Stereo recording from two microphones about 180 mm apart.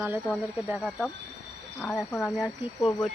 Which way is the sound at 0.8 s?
5° left (ahead or behind).